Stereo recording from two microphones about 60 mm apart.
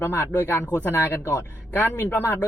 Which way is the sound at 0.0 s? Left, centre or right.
Left.